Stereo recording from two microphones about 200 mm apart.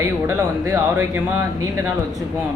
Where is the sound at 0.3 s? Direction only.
15° right (ahead or behind).